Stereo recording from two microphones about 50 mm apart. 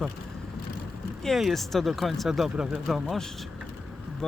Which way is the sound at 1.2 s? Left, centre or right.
Centre.